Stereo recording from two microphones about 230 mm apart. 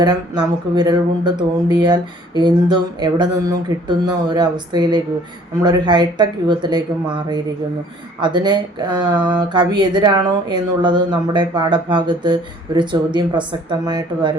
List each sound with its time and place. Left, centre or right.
0.0 s speech: centre